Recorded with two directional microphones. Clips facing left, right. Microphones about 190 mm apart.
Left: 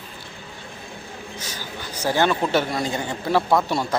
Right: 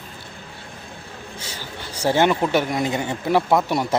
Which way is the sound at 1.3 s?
30° right (ahead or behind).